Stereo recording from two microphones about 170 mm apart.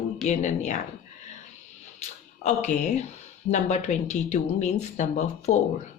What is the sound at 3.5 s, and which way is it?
A woman's voice, 45° left (ahead or behind).